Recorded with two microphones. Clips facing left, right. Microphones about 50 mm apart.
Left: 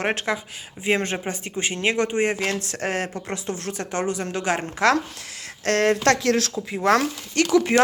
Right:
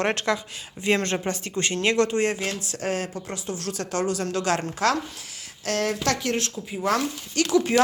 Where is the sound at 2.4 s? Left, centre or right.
Left.